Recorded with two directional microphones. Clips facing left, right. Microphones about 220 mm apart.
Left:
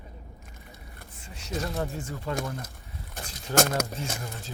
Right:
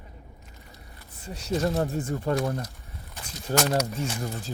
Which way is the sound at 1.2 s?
40° right (ahead or behind).